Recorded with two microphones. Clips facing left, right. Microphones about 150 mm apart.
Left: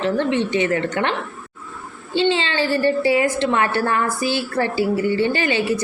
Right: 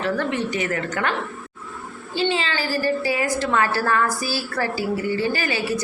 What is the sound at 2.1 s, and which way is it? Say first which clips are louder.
A woman's voice: left 4 dB; 25° left (ahead or behind).